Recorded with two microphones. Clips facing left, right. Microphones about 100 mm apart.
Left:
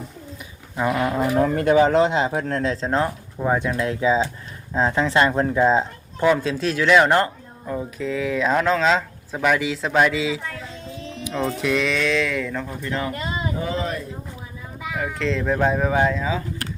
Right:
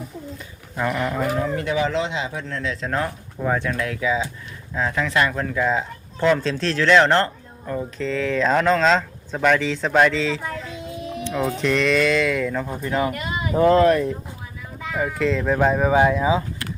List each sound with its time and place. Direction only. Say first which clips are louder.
0.8 s speech: left 2 dB; 15° left (ahead or behind)
1.4 s speech: left 6 dB; 50° left (ahead or behind)
2.8 s speech: left 3 dB; 25° left (ahead or behind)
6.1 s speech: even; 10° left (ahead or behind)
10.8 s music: right 4 dB; 15° right (ahead or behind)
11.5 s speech: right 4 dB; 5° left (ahead or behind)
12.8 s speech: right 5 dB; 15° right (ahead or behind)
13.1 s a sound: even; 30° left (ahead or behind)
13.5 s speech: right 15 dB; 60° right (ahead or behind)
14.9 s speech: right 3 dB; 5° right (ahead or behind)